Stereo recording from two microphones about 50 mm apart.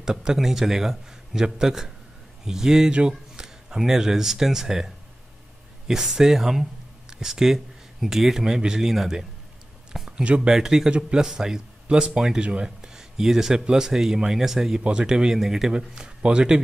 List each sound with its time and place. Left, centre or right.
0.0 s a man's voice: centre
9.9 s a sound: centre
10.2 s speech: right
10.5 s a man's voice: centre
14.8 s a man's voice: centre